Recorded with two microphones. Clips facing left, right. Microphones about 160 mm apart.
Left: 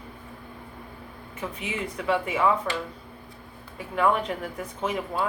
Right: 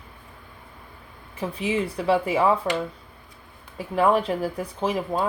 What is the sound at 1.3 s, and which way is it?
Speech, 30° right (ahead or behind).